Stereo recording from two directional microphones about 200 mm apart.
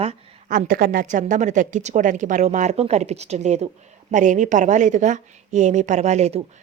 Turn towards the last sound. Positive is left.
turn(degrees=-35)  # may be behind; listen again after turning